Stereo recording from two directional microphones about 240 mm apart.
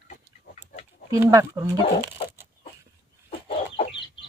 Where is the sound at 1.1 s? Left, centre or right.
Centre.